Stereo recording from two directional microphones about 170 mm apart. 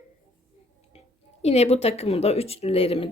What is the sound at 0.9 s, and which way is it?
A woman's voice, 40° left (ahead or behind).